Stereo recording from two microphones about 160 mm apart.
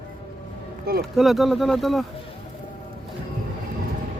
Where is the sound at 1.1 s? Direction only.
Centre (ahead or behind).